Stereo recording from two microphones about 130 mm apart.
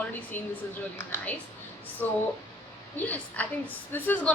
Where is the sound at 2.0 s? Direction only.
15° left (ahead or behind).